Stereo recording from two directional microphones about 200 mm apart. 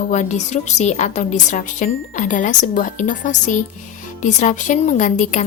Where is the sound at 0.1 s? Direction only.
40° left (ahead or behind).